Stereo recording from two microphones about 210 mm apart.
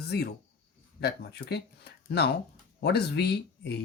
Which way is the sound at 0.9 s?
50° left (ahead or behind).